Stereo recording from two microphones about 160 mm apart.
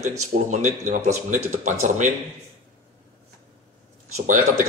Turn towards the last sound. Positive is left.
turn(degrees=-50)  # may be behind; listen again after turning